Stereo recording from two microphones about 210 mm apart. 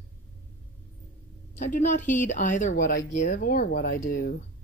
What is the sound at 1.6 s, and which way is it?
Speech, 35° left (ahead or behind).